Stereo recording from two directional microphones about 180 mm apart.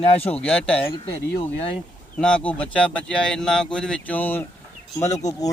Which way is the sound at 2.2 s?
5° left (ahead or behind).